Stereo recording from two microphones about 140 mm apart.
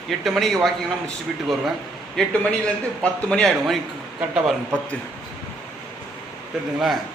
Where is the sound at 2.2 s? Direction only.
5° left (ahead or behind).